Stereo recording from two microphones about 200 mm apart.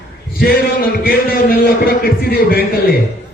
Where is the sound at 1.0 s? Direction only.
50° left (ahead or behind).